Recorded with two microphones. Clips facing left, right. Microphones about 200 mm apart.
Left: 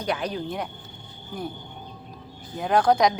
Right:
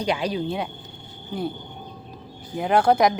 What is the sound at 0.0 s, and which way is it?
Speech, 10° right (ahead or behind).